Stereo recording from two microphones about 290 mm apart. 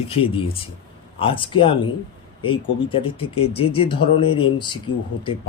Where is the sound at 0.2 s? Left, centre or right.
Centre.